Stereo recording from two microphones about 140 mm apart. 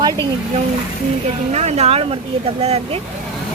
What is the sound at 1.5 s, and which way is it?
Speech, 55° right (ahead or behind).